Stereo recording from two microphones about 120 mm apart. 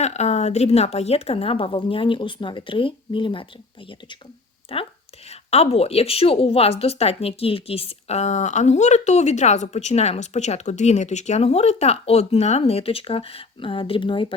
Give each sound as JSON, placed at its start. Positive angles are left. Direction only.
{"t": 0.0, "sound": "a woman's voice", "side_deg": 70}
{"t": 4.7, "sound": "a woman's voice", "side_deg": 50}
{"t": 5.3, "sound": "a woman's voice", "side_deg": 60}